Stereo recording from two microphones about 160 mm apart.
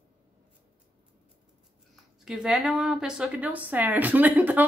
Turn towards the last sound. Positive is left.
turn(degrees=-10)  # may be behind; listen again after turning